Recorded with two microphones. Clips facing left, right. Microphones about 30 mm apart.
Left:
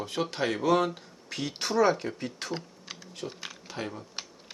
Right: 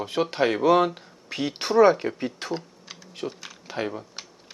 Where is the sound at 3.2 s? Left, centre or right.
Right.